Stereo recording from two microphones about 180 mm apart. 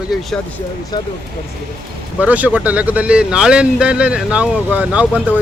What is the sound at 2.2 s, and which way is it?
Speech, 10° right (ahead or behind).